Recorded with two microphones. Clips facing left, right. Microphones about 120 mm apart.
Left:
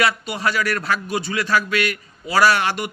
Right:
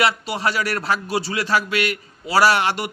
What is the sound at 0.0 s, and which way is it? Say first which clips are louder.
A man's voice: even; 25° right (ahead or behind).